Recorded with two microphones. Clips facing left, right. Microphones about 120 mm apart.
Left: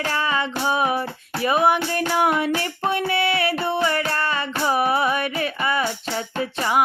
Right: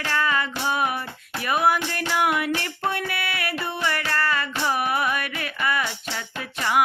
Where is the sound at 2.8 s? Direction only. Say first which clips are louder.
Left 8 dB; 25° left (ahead or behind).